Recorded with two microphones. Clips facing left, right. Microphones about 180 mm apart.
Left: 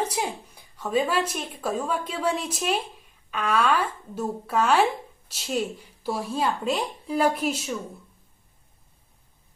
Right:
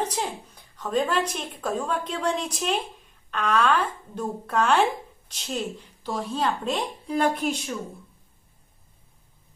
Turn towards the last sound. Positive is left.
turn(degrees=5)  # may be behind; listen again after turning